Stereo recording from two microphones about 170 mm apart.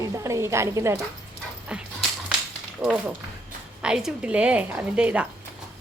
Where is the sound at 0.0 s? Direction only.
20° right (ahead or behind).